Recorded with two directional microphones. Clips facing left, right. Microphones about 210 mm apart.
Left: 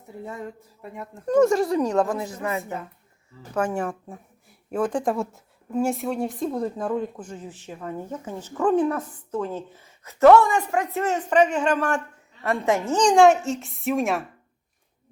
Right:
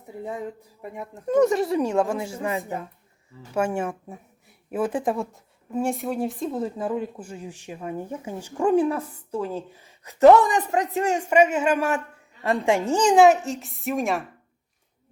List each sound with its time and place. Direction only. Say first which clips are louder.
0.3 s speech: right 4 dB; 15° right (ahead or behind)
1.3 s a woman's voice: left 1 dB; centre (ahead or behind)
2.3 s speech: right 1 dB; 15° right (ahead or behind)
3.6 s speech: right 1 dB; 25° right (ahead or behind)
4.1 s a woman's voice: even; 5° right (ahead or behind)